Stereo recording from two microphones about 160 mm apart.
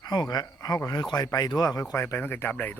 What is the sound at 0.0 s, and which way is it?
Speech, 25° left (ahead or behind).